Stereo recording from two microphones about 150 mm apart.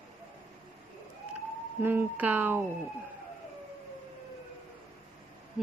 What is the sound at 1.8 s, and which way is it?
Speech, 15° right (ahead or behind).